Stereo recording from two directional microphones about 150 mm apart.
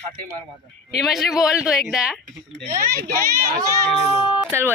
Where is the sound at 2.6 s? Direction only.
70° right (ahead or behind).